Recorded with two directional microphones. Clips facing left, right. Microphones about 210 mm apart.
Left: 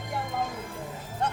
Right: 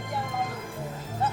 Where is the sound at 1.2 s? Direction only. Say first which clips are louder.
Right 1 dB; 5° right (ahead or behind).